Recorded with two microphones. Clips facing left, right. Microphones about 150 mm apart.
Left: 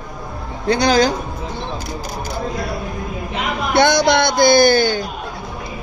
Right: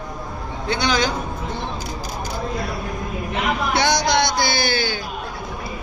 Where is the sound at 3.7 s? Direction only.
55° left (ahead or behind).